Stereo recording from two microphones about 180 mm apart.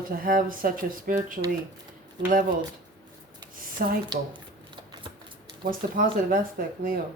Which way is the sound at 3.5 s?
50° right (ahead or behind).